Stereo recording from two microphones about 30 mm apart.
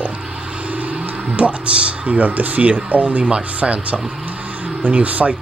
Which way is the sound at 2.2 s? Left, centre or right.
Right.